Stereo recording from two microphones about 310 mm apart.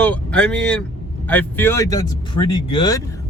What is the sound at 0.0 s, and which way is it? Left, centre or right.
Speech, centre.